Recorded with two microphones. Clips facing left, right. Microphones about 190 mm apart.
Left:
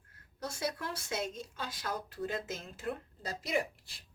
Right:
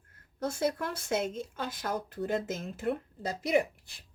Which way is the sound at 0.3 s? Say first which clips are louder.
Right 7 dB; 55° right (ahead or behind).